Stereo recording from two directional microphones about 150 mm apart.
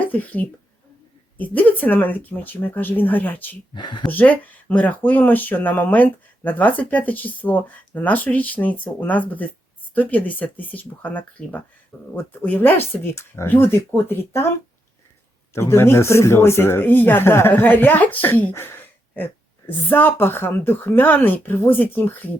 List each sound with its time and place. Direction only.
0.0 s speech: 10° left (ahead or behind)
3.8 s speech: 30° left (ahead or behind)
4.1 s speech: 10° left (ahead or behind)
15.5 s speech: 15° left (ahead or behind)